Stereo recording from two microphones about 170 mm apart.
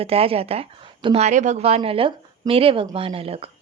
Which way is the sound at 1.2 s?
45° right (ahead or behind).